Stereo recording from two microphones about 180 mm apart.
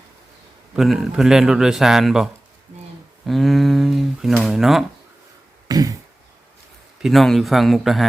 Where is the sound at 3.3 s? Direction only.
Centre (ahead or behind).